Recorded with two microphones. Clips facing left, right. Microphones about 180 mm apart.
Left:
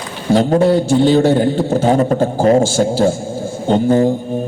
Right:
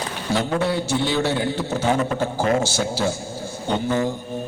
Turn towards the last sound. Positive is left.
turn(degrees=40)  # may be behind; listen again after turning